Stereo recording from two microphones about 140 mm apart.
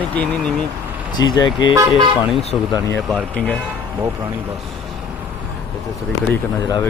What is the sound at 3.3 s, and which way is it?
Speech, 10° left (ahead or behind).